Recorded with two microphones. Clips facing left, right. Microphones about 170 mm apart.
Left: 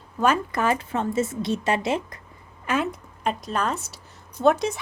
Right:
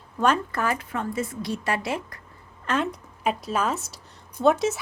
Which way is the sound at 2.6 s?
5° left (ahead or behind).